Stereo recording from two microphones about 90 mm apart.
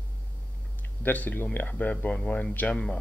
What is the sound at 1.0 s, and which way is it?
Speech, 20° left (ahead or behind).